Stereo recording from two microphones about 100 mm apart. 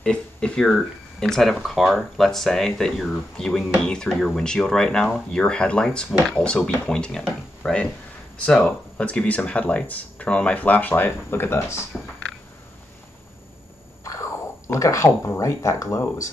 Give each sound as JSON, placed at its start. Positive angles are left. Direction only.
{"t": 0.0, "sound": "speech", "side_deg": 10}
{"t": 14.0, "sound": "speech", "side_deg": 30}